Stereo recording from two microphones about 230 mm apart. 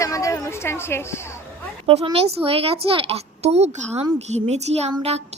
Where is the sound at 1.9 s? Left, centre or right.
Right.